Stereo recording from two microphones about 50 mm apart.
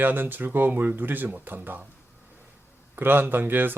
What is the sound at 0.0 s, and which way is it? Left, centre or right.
Speech, right.